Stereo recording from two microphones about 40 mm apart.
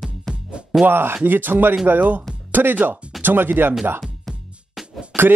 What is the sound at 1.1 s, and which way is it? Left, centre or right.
Speech, right.